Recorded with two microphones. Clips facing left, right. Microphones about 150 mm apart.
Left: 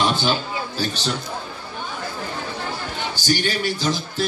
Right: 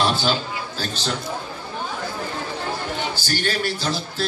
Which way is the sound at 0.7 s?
10° left (ahead or behind).